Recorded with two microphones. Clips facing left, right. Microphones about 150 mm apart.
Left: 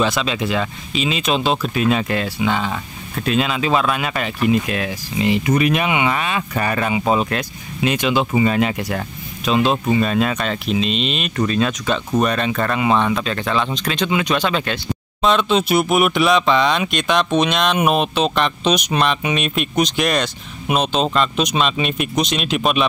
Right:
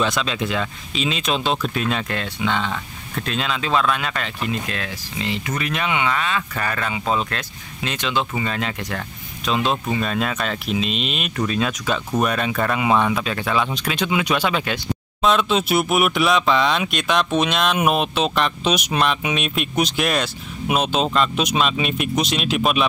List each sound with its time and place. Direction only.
0.0 s speech: 5° left (ahead or behind)